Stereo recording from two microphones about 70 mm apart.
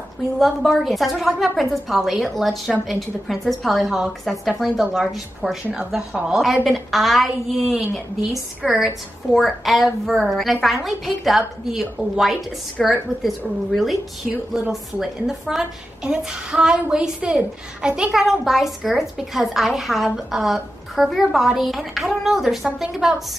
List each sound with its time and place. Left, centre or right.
0.4 s a woman's voice: centre
5.9 s female singing: centre
6.3 s a woman's voice: centre
16.1 s female singing: centre
17.8 s a woman's voice: centre